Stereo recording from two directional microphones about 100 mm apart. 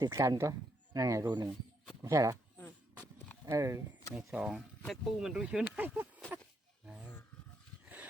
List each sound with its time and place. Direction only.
0.0 s speech: 30° right (ahead or behind)
1.3 s speech: 45° right (ahead or behind)
2.0 s speech: 30° right (ahead or behind)
2.6 s a sound: 20° left (ahead or behind)
3.4 s speech: 30° right (ahead or behind)
4.2 s speech: 5° right (ahead or behind)
6.8 s a sound: 10° right (ahead or behind)